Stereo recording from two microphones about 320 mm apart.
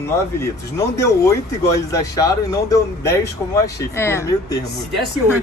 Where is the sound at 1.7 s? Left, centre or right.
Centre.